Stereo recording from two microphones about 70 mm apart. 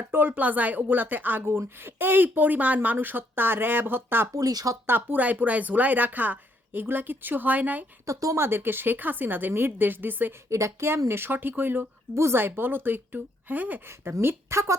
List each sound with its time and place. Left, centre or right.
0.0 s speech: right
4.4 s speech: right
4.9 s speech: right
8.0 s speech: right
8.4 s speech: right
10.5 s a woman's voice: right
12.1 s a woman's voice: right